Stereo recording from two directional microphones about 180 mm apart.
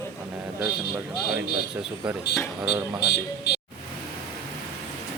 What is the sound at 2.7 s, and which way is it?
Speech, 70° left (ahead or behind).